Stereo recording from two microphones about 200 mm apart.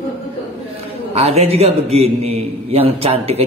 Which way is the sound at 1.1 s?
30° right (ahead or behind).